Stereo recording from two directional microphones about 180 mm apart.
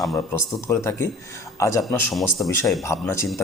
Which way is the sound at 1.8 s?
Centre (ahead or behind).